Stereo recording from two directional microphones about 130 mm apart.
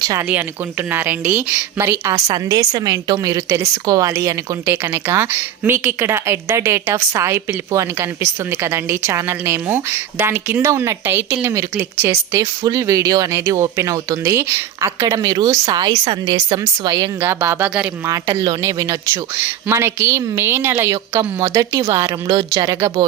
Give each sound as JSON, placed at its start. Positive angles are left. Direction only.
{"t": 0.0, "sound": "speech", "side_deg": -25}
{"t": 0.3, "sound": "a woman's voice", "side_deg": -15}
{"t": 17.2, "sound": "a woman's voice", "side_deg": -20}